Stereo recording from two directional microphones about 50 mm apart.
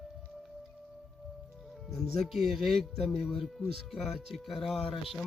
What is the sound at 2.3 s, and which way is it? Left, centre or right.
A man's voice, centre.